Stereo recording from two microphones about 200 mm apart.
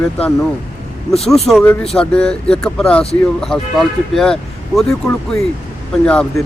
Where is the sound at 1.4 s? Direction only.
Centre (ahead or behind).